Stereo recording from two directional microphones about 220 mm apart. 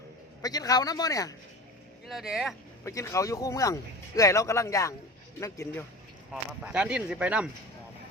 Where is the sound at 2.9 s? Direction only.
15° left (ahead or behind).